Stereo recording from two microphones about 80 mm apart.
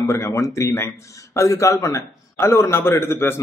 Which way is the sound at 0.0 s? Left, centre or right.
Left.